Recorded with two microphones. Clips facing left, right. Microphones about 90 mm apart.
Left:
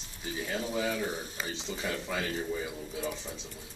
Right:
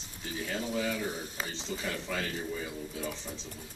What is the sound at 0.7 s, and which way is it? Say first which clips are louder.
Speech: left 1 dB; 10° left (ahead or behind).